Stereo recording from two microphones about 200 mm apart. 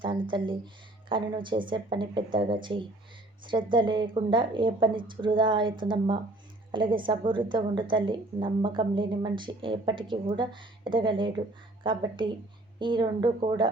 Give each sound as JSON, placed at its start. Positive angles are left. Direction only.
{"t": 0.0, "sound": "a woman's voice", "side_deg": -25}